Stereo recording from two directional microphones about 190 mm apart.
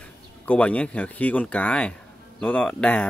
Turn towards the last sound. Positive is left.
turn(degrees=5)  # may be behind; listen again after turning